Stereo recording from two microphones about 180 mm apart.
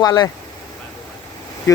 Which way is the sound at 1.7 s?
20° left (ahead or behind).